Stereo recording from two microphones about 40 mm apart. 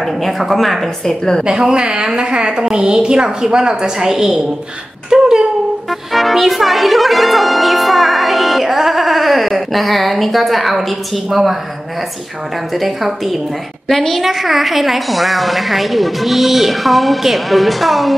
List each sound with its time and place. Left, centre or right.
0.0 s speech: centre
1.4 s a woman's voice: centre
5.9 s speech: centre
12.7 s speech: centre
14.2 s speech: centre